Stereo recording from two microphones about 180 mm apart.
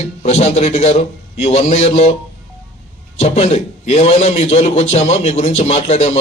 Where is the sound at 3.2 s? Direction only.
35° left (ahead or behind).